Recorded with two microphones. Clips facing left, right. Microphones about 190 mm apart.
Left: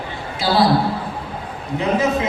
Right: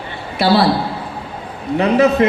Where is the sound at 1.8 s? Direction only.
65° right (ahead or behind).